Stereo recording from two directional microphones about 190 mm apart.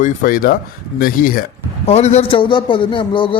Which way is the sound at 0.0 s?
45° left (ahead or behind).